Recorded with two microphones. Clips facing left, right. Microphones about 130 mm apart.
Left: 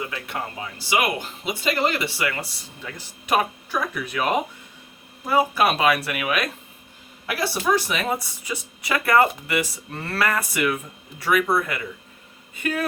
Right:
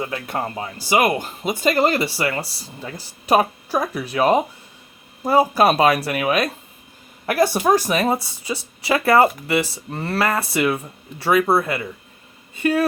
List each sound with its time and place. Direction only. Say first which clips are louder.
0.0 s speech: right 5 dB; 40° right (ahead or behind)
7.3 s a woman's voice: right 6 dB; 45° right (ahead or behind); by 12.8 s 30° right (ahead or behind)